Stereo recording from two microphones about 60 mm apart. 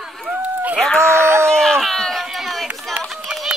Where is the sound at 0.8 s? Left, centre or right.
Centre.